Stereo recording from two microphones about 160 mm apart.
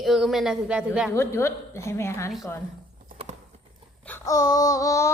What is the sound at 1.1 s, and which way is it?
A woman's voice, 15° left (ahead or behind).